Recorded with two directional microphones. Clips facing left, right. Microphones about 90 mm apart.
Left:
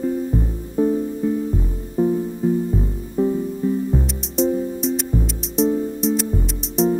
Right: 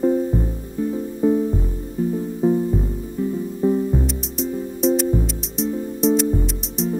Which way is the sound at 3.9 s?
Centre (ahead or behind).